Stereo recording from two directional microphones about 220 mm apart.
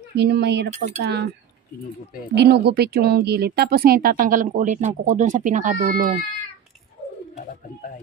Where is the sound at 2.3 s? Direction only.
50° right (ahead or behind).